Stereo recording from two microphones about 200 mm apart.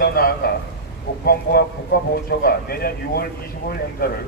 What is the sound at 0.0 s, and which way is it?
A man's voice, 50° left (ahead or behind).